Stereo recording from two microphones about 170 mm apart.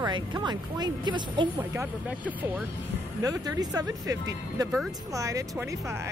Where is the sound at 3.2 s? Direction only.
20° right (ahead or behind).